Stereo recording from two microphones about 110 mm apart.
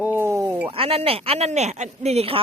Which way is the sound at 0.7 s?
60° right (ahead or behind).